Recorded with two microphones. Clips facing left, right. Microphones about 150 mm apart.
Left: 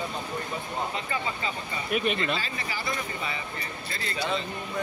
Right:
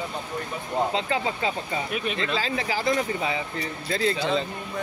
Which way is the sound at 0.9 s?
85° right.